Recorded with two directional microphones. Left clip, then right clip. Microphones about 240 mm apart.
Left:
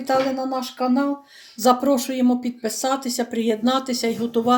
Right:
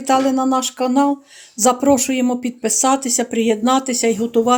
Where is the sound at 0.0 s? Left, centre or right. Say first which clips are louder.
Right 5 dB; right.